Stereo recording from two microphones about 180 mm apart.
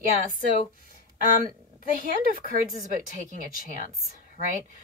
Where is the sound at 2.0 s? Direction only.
50° right (ahead or behind).